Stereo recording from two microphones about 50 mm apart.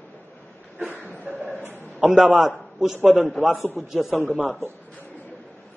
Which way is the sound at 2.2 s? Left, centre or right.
Centre.